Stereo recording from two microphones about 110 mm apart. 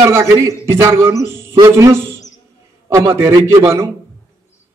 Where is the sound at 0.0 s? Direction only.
25° right (ahead or behind).